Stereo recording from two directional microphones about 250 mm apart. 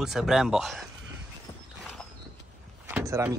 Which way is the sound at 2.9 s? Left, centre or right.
Centre.